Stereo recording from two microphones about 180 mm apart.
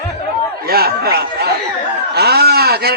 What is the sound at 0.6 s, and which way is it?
Speech, 60° right (ahead or behind).